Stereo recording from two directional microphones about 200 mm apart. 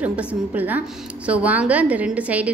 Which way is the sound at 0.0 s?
5° right (ahead or behind).